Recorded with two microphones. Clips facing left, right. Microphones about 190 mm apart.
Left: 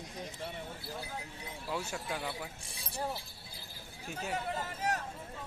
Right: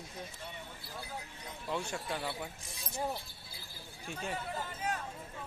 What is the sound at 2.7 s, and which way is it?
Speech, 30° left (ahead or behind).